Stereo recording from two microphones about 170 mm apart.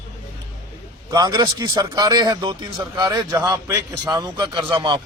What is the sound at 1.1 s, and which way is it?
A man's voice, 25° right (ahead or behind).